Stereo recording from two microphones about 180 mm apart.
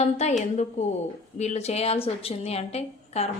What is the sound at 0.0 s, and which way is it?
A woman's voice, 40° left (ahead or behind).